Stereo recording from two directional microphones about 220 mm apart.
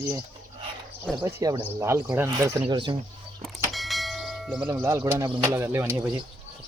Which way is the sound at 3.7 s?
Centre (ahead or behind).